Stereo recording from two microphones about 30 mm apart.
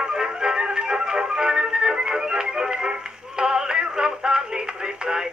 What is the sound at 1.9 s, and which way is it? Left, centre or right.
Music, right.